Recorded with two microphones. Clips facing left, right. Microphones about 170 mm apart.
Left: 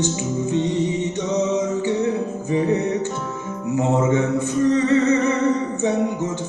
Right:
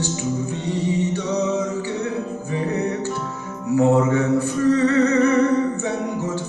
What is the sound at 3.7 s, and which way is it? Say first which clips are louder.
Music: right 2 dB; 20° left (ahead or behind).